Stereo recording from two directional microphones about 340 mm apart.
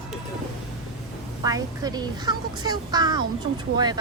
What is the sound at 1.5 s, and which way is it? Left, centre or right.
Speech, centre.